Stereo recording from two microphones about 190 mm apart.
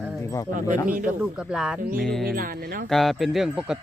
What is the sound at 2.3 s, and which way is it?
Speech, 50° right (ahead or behind).